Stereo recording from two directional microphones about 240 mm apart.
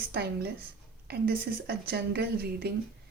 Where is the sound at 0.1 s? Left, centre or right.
Right.